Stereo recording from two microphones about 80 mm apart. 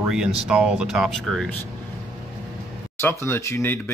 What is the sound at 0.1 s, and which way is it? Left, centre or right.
Speech, centre.